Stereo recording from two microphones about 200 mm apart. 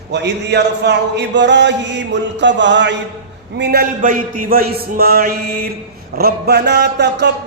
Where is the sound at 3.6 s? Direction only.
55° right (ahead or behind).